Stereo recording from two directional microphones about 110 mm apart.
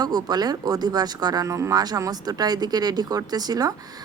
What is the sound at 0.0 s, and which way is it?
Speech, 35° right (ahead or behind).